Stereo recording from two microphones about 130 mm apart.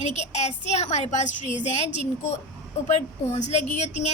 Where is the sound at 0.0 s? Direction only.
60° left (ahead or behind).